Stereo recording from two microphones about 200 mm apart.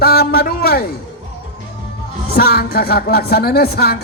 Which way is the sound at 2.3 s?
50° left (ahead or behind).